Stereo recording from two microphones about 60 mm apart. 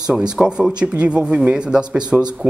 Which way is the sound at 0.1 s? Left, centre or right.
Centre.